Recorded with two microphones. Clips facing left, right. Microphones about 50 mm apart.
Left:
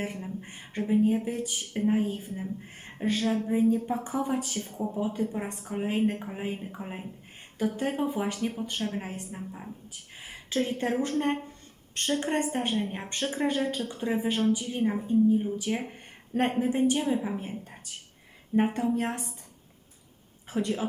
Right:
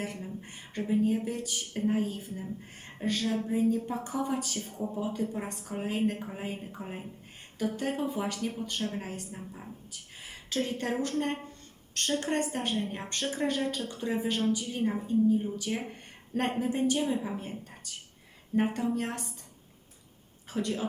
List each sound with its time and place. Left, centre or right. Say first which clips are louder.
0.0 s a woman's voice: left 3 dB; left
20.5 s a woman's voice: left 3 dB; centre